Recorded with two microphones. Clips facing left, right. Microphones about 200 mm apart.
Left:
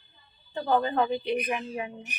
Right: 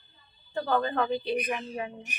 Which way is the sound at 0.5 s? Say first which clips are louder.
Left 2 dB; 20° left (ahead or behind).